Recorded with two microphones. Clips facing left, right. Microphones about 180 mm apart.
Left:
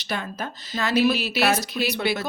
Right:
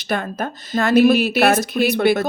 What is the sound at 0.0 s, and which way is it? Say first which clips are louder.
Speech: right 7 dB; 50° right (ahead or behind).